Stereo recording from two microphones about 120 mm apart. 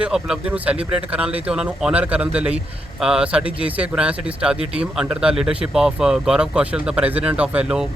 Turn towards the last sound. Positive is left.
turn(degrees=-5)  # may be behind; listen again after turning